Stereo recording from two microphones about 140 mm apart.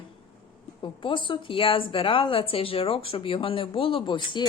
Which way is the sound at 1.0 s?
35° left (ahead or behind).